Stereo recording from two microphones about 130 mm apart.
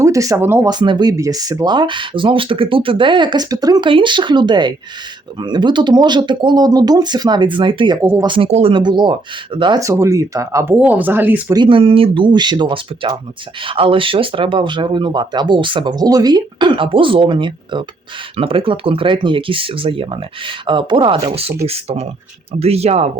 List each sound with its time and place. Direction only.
0.0 s a sound: 25° right (ahead or behind)
0.3 s speech: 15° right (ahead or behind)
0.7 s speech: 35° right (ahead or behind)
3.8 s speech: 40° right (ahead or behind)
8.4 s speech: 55° right (ahead or behind)
8.7 s speech: 35° right (ahead or behind)
9.8 s speech: 25° right (ahead or behind)
10.8 s speech: 10° right (ahead or behind)
11.5 s speech: 40° right (ahead or behind); by 23.0 s 55° right (ahead or behind)